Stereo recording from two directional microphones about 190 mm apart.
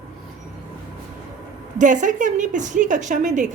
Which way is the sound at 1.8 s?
40° right (ahead or behind).